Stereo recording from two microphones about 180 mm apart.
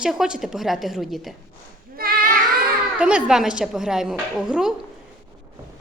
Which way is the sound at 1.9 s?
55° right (ahead or behind).